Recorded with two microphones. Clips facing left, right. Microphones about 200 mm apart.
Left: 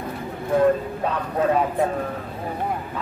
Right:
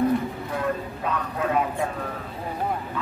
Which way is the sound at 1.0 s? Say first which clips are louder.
Left 5 dB; 35° left (ahead or behind).